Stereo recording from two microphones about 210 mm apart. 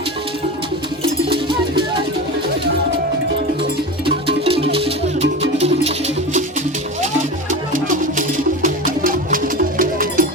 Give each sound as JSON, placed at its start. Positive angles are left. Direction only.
{"t": 1.3, "sound": "music", "side_deg": -25}
{"t": 4.0, "sound": "music", "side_deg": -25}
{"t": 8.6, "sound": "music", "side_deg": -40}